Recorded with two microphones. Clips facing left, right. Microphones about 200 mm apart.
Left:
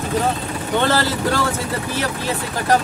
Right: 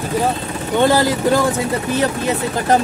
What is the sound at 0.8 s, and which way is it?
Speech, 15° right (ahead or behind).